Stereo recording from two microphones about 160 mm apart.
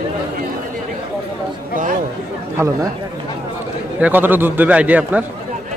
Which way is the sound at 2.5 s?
20° right (ahead or behind).